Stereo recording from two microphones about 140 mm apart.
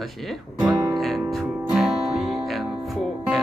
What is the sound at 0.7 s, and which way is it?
Music, 25° right (ahead or behind).